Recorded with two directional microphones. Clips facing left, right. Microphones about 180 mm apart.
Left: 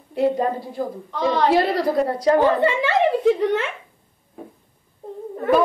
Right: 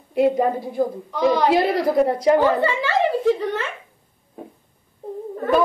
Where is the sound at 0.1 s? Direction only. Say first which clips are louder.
Right 2 dB; 15° right (ahead or behind).